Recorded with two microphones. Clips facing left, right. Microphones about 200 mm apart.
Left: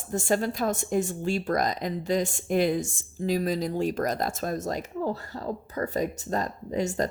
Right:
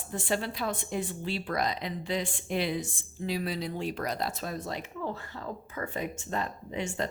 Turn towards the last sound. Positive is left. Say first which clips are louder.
# left 6 dB
turn(degrees=40)  # may be behind; listen again after turning